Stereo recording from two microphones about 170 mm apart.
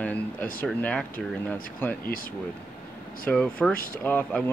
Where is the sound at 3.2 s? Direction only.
5° left (ahead or behind).